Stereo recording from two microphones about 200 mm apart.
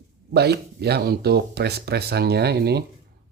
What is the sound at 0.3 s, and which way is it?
Speech, 55° right (ahead or behind).